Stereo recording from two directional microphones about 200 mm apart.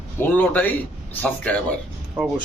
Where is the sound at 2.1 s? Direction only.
5° right (ahead or behind).